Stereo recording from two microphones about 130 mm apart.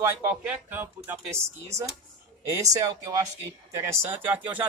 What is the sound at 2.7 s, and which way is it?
Speech, 25° right (ahead or behind).